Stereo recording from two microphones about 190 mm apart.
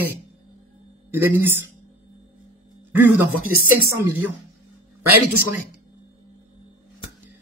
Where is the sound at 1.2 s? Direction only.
10° right (ahead or behind).